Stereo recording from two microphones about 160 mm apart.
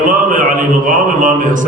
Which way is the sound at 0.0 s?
55° right (ahead or behind).